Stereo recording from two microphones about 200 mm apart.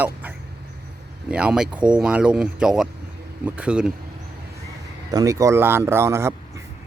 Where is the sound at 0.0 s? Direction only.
10° right (ahead or behind).